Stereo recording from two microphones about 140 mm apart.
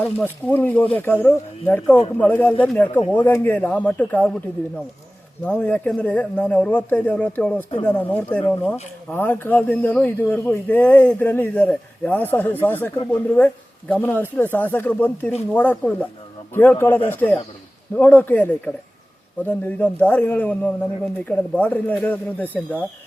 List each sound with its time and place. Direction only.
0.2 s speech: 10° left (ahead or behind)
5.4 s speech: 10° left (ahead or behind)